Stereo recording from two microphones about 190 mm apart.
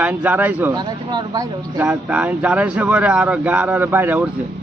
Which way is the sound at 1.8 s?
10° right (ahead or behind).